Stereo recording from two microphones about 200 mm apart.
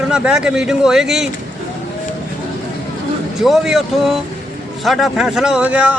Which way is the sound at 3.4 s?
Centre (ahead or behind).